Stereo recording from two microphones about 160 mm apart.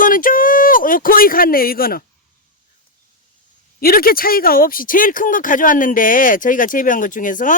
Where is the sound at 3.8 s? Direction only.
65° left (ahead or behind).